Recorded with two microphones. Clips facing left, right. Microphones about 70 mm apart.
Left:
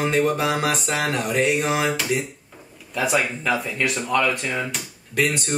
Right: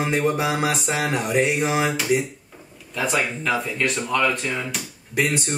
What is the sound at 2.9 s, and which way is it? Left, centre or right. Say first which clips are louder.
Speech: left 1 dB; centre.